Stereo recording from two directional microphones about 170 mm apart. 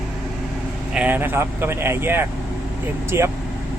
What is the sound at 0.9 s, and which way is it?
Speech, 10° right (ahead or behind).